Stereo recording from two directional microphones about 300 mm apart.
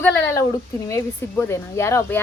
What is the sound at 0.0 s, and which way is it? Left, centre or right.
Speech, centre.